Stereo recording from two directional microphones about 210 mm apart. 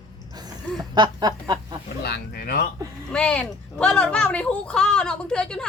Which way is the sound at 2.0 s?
50° left (ahead or behind).